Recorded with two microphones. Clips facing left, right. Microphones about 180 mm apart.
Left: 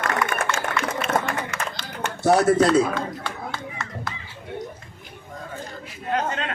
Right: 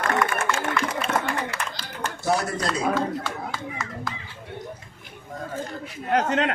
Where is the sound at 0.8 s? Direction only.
35° right (ahead or behind).